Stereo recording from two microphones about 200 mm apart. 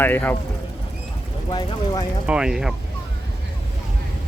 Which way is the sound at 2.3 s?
5° right (ahead or behind).